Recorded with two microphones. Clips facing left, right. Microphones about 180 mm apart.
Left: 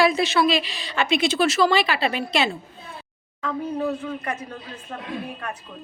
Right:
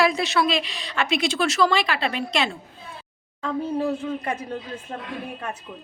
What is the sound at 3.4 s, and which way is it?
Speech, 30° right (ahead or behind).